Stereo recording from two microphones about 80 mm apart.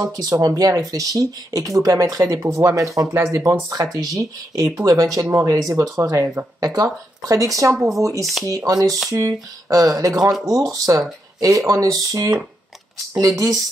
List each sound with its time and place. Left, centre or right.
0.0 s speech: right
3.7 s speech: right
7.7 s speech: centre
8.0 s speech: right